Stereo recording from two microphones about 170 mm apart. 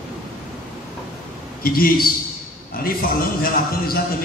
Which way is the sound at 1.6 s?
60° left (ahead or behind).